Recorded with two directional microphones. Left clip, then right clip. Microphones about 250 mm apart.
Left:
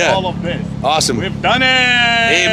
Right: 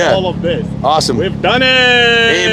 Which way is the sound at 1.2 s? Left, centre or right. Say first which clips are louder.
Right 2 dB; left.